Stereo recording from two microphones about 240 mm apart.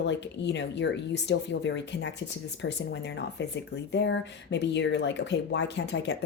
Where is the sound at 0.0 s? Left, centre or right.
Left.